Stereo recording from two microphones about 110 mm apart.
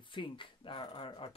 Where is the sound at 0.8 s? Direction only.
40° left (ahead or behind).